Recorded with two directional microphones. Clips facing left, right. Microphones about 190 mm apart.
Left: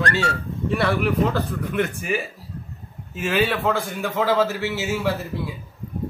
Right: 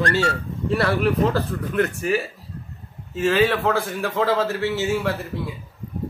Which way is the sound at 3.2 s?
5° left (ahead or behind).